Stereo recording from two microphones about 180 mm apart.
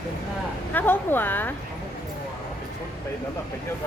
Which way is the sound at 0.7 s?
10° left (ahead or behind).